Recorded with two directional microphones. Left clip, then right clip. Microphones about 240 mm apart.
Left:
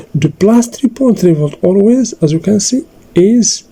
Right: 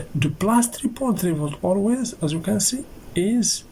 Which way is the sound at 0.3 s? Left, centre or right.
Left.